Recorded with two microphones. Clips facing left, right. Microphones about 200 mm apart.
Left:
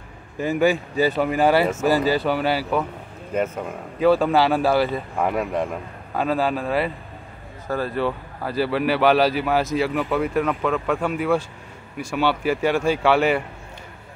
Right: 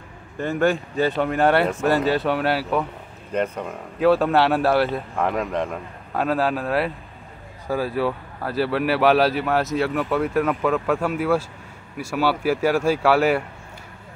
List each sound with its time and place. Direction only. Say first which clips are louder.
0.4 s speech: left 1 dB; 5° left (ahead or behind)